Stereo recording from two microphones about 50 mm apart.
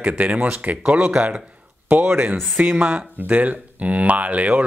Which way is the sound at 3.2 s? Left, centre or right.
Right.